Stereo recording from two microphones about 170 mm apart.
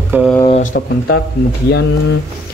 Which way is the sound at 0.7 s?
90° left.